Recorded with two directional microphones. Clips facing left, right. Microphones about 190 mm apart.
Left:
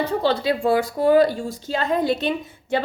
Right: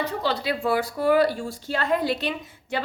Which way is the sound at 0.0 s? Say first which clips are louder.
Left 5 dB; 25° left (ahead or behind).